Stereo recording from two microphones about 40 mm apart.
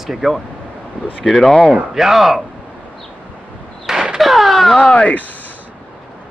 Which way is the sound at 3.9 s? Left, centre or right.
Centre.